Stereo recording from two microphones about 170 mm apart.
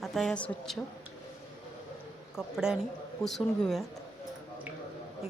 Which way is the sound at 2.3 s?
5° right (ahead or behind).